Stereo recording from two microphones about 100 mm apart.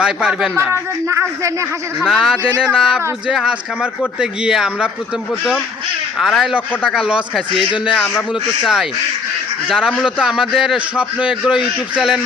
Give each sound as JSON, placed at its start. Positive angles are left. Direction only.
{"t": 0.0, "sound": "speech", "side_deg": -5}
{"t": 0.5, "sound": "speech", "side_deg": -30}
{"t": 2.0, "sound": "a man's voice", "side_deg": -5}
{"t": 6.1, "sound": "a man's voice", "side_deg": -5}
{"t": 8.6, "sound": "a man's voice", "side_deg": -5}